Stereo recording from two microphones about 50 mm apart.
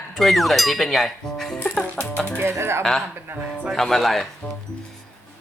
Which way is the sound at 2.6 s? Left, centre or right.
Right.